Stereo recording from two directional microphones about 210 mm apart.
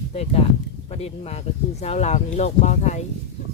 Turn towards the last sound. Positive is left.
turn(degrees=35)  # may be behind; listen again after turning